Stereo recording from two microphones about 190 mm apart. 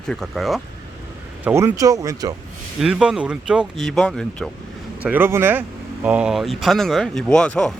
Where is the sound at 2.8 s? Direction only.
5° right (ahead or behind).